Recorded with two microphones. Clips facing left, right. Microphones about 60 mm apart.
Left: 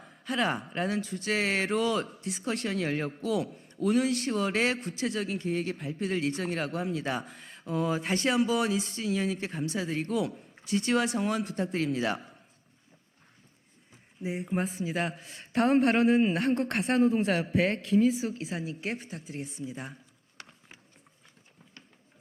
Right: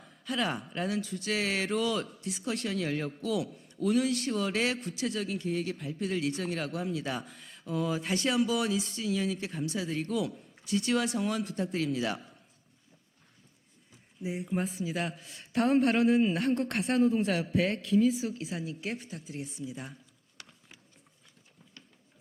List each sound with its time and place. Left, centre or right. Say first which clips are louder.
0.0 s a sound: left 3 dB; left
0.6 s a man's voice: left 2 dB; left
3.8 s a man's voice: left 1 dB; left
5.0 s a man's voice: left 2 dB; left
5.4 s a man's voice: left 2 dB; left
14.3 s a man's voice: left 2 dB; left
20.4 s a sound: left 3 dB; left